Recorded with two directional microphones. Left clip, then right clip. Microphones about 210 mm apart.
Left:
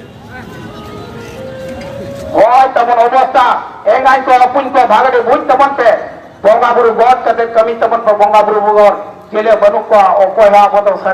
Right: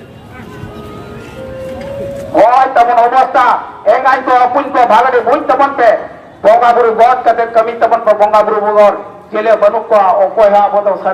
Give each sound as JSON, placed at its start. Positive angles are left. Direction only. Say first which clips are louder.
{"t": 2.3, "sound": "a man's voice", "louder": "even", "side_deg": -30}